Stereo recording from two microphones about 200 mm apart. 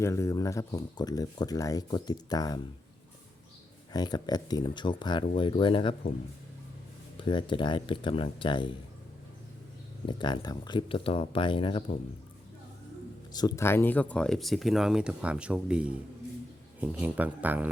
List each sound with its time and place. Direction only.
0.0 s speech: 15° left (ahead or behind)
3.9 s speech: 20° left (ahead or behind)
7.3 s speech: 25° left (ahead or behind)
10.1 s speech: 25° left (ahead or behind)
13.3 s speech: 20° left (ahead or behind); by 17.7 s 10° right (ahead or behind)